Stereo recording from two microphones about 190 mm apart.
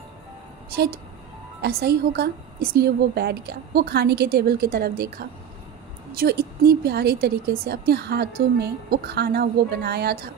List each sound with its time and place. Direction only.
1.6 s a woman's voice: 55° right (ahead or behind)